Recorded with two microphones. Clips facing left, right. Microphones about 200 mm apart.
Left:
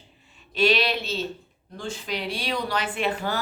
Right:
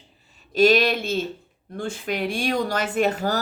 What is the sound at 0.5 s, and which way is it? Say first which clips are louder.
Speech: right 5 dB; 45° right (ahead or behind).